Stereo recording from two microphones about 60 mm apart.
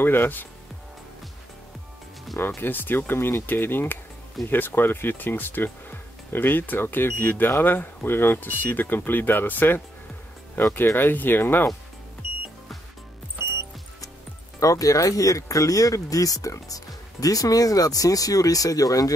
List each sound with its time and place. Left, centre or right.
0.0 s speech: left
2.3 s speech: left
14.6 s speech: left
16.6 s speech: left